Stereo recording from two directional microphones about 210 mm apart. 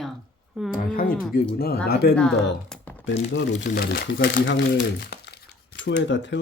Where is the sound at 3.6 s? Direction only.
45° left (ahead or behind).